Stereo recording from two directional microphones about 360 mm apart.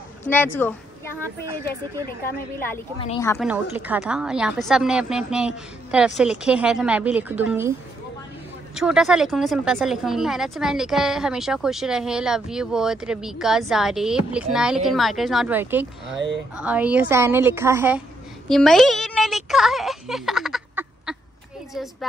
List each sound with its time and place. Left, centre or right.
0.2 s speech: centre
2.2 s a woman's voice: centre
3.4 s speech: centre
8.7 s speech: centre
16.2 s speech: right
16.5 s speech: centre
18.5 s a sound: centre
21.7 s speech: centre